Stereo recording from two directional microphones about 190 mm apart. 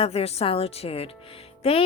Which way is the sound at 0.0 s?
30° left (ahead or behind).